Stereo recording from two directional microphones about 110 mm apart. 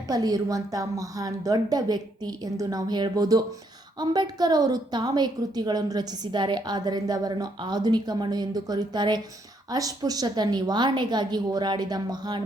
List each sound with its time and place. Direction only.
0.1 s a woman's voice: 35° right (ahead or behind)